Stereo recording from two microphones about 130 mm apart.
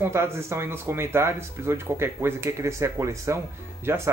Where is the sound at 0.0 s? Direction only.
20° right (ahead or behind).